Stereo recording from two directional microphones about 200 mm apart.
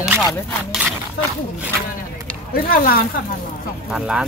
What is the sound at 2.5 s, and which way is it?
Speech, 50° left (ahead or behind).